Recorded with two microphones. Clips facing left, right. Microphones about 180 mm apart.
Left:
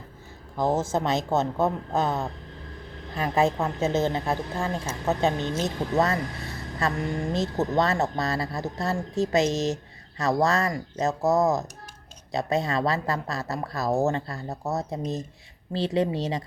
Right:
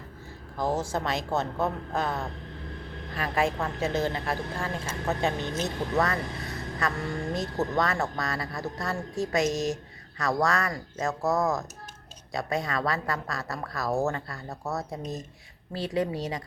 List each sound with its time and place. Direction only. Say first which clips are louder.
0.6 s a woman's voice: left 4 dB; 25° left (ahead or behind)